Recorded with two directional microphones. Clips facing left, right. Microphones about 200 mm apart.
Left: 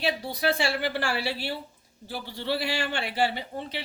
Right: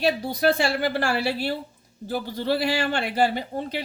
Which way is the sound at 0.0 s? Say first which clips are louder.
Right 6 dB; 45° right (ahead or behind).